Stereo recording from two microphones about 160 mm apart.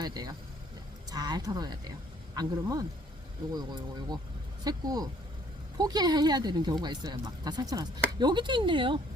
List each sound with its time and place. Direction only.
0.0 s speech: 25° right (ahead or behind)